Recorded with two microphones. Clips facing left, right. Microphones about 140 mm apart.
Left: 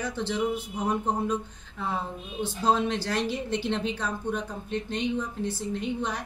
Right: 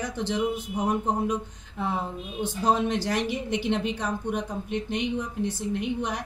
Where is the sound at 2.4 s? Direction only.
15° right (ahead or behind).